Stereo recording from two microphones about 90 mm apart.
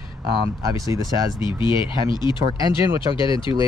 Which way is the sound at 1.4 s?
65° left (ahead or behind).